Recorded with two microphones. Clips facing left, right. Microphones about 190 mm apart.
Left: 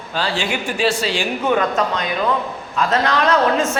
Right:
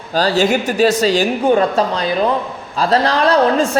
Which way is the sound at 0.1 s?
40° right (ahead or behind).